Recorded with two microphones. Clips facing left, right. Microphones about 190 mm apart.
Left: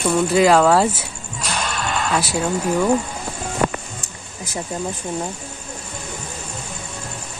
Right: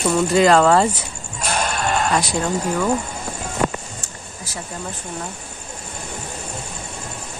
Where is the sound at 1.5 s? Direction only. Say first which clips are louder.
Right 3 dB; 45° right (ahead or behind).